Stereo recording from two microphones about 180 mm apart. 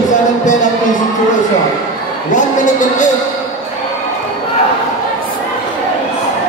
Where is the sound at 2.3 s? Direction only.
45° left (ahead or behind).